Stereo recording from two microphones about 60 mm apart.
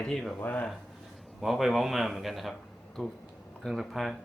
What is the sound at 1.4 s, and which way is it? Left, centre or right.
Speech, centre.